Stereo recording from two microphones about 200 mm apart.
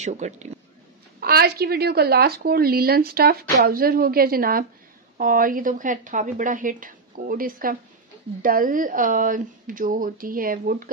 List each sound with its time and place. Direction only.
0.0 s speech: 35° right (ahead or behind)
1.2 s a woman's voice: 50° right (ahead or behind)